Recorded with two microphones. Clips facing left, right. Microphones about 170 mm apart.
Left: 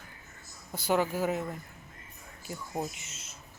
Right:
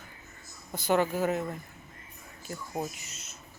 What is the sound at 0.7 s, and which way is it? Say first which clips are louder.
Speech: right 2 dB; 10° left (ahead or behind).